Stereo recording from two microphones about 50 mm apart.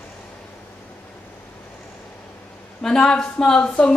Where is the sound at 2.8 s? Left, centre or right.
Centre.